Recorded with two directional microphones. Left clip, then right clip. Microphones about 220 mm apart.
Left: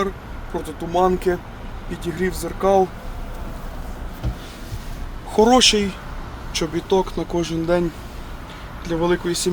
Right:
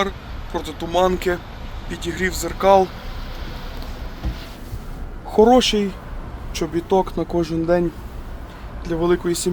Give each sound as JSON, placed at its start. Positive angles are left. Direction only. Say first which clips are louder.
{"t": 0.5, "sound": "speech", "louder": "right 1 dB", "side_deg": 15}
{"t": 5.3, "sound": "speech", "louder": "even", "side_deg": 0}
{"t": 8.9, "sound": "speech", "louder": "right 1 dB", "side_deg": -5}